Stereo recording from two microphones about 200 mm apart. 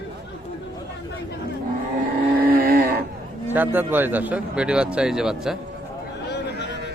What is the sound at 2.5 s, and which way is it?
Cattle, 50° right (ahead or behind).